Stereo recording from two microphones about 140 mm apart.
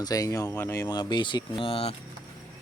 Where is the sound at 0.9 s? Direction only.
30° left (ahead or behind).